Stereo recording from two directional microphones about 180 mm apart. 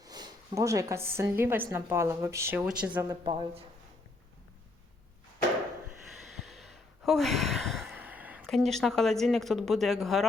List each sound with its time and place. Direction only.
0.0 s speech: 20° right (ahead or behind)
3.1 s speech: 25° right (ahead or behind)
6.1 s sigh: centre (ahead or behind)
8.4 s speech: centre (ahead or behind)